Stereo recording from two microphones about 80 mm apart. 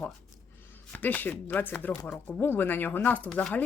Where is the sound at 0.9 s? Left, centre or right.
Left.